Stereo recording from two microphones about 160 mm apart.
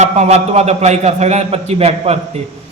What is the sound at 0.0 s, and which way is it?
A man's voice, 45° right (ahead or behind).